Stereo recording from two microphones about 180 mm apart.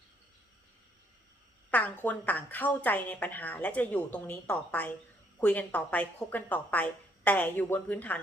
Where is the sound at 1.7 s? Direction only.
10° left (ahead or behind).